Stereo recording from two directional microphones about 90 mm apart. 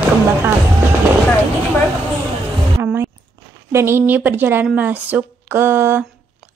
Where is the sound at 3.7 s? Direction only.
30° right (ahead or behind).